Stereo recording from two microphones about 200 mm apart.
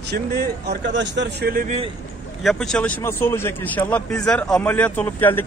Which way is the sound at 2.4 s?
Centre (ahead or behind).